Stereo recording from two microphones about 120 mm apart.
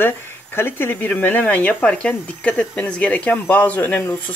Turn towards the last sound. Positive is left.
turn(degrees=15)  # may be behind; listen again after turning